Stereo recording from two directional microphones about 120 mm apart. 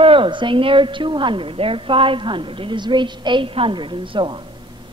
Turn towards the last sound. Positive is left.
turn(degrees=-40)  # may be behind; listen again after turning